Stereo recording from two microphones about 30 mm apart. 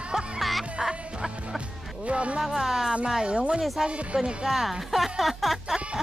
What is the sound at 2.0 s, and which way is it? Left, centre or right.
Speech, right.